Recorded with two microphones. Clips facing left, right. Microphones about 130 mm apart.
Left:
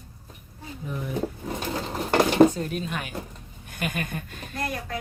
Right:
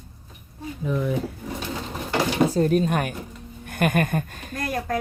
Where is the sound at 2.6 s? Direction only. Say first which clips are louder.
Right 10 dB; 40° right (ahead or behind).